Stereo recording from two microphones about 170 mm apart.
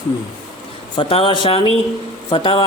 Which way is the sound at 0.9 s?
30° left (ahead or behind).